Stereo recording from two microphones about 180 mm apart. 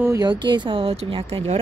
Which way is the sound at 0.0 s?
20° right (ahead or behind).